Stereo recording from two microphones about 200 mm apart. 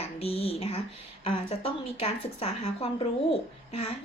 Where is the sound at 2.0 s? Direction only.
30° left (ahead or behind).